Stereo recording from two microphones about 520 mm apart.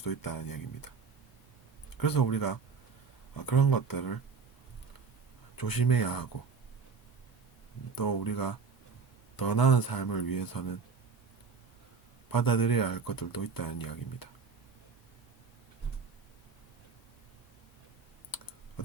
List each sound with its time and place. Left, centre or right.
0.0 s speech: left
2.0 s speech: left
5.5 s speech: left
7.9 s speech: left
12.3 s speech: left
18.3 s typing: left